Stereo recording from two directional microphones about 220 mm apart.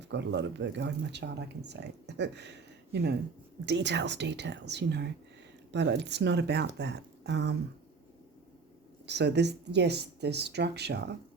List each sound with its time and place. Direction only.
0.0 s speech: 50° right (ahead or behind)
9.0 s speech: 50° right (ahead or behind)